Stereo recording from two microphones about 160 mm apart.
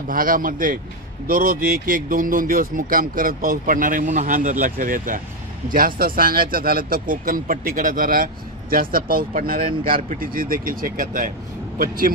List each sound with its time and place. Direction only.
0.1 s speech: 60° right (ahead or behind)